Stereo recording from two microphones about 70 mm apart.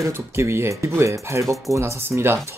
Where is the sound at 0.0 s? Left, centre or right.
Right.